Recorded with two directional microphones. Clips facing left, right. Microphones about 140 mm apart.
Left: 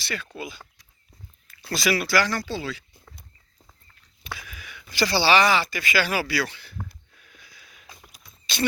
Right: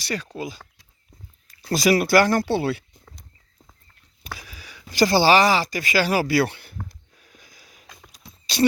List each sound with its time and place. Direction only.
0.0 s speech: 40° right (ahead or behind)
1.7 s speech: 45° right (ahead or behind); by 2.8 s 60° right (ahead or behind)
4.2 s speech: 40° right (ahead or behind)
7.2 s a sound: 40° right (ahead or behind)
7.9 s horse: centre (ahead or behind)
8.2 s a sound: 35° right (ahead or behind)